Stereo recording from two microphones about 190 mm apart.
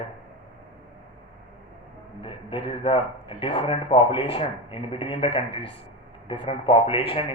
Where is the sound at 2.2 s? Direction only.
25° left (ahead or behind).